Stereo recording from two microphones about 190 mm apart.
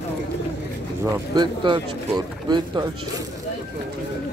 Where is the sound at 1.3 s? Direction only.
25° right (ahead or behind).